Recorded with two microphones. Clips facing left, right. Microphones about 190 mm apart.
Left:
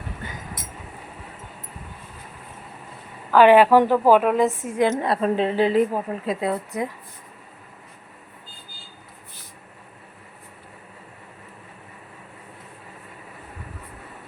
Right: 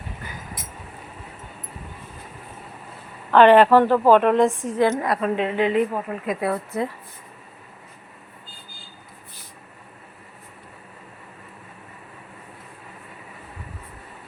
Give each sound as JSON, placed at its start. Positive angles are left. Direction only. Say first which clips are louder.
{"t": 3.3, "sound": "a woman's voice", "louder": "even", "side_deg": 10}
{"t": 4.8, "sound": "a woman's voice", "louder": "even", "side_deg": 25}